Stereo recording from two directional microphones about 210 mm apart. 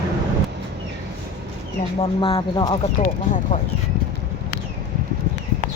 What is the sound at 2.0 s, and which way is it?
Speech, 25° left (ahead or behind).